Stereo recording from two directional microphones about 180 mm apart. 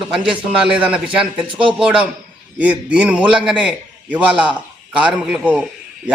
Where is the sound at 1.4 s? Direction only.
30° right (ahead or behind).